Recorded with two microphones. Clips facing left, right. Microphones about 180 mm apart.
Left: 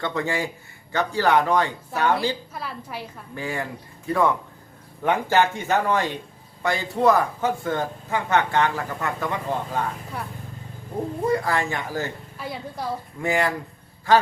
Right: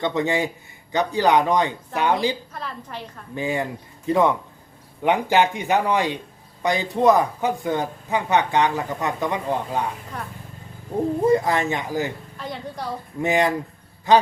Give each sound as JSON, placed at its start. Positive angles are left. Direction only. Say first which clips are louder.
{"t": 0.0, "sound": "speech", "louder": "right 4 dB", "side_deg": -20}
{"t": 2.5, "sound": "a woman's voice", "louder": "even", "side_deg": 5}
{"t": 3.3, "sound": "speech", "louder": "right 5 dB", "side_deg": -20}
{"t": 11.3, "sound": "speech", "louder": "right 3 dB", "side_deg": -20}
{"t": 12.4, "sound": "a woman's voice", "louder": "even", "side_deg": 5}
{"t": 13.2, "sound": "speech", "louder": "right 3 dB", "side_deg": -20}